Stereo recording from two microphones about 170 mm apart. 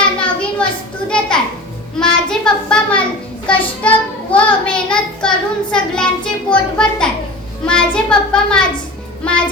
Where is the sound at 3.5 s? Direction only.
5° left (ahead or behind).